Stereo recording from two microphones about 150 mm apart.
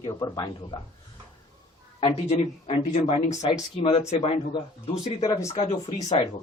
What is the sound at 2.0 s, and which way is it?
Speech, 40° left (ahead or behind).